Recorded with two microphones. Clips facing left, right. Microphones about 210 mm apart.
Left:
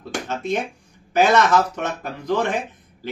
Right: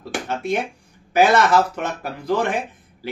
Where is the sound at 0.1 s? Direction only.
10° right (ahead or behind).